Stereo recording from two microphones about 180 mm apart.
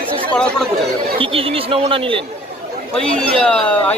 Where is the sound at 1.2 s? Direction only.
30° right (ahead or behind).